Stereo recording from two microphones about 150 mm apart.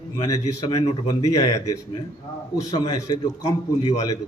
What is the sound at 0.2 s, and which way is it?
A man's voice, 25° left (ahead or behind).